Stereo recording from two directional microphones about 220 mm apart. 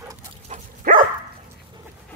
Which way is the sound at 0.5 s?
40° right (ahead or behind).